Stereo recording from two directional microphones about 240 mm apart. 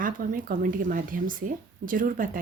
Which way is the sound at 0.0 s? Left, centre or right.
Right.